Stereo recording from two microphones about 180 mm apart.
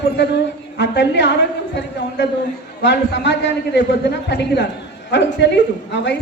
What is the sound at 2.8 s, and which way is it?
A man's voice, 75° left (ahead or behind).